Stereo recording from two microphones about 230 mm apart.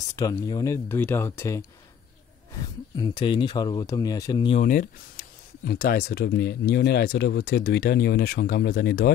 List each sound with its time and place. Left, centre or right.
0.1 s speech: centre
3.0 s speech: centre
4.6 s speech: left